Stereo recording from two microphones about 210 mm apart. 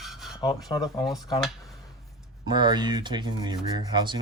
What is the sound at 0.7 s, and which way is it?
Speech, 20° left (ahead or behind).